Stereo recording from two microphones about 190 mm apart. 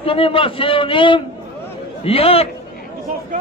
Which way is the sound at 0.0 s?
30° left (ahead or behind).